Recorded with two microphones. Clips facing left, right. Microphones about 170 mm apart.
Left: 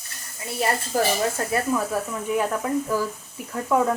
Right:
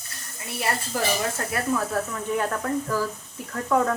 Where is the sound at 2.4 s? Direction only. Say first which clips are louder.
Left 3 dB; 10° left (ahead or behind).